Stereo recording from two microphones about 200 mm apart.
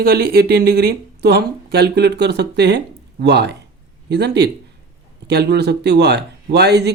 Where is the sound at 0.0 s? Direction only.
50° right (ahead or behind).